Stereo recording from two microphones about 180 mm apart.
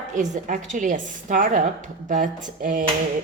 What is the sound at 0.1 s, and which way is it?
Speech, 45° right (ahead or behind).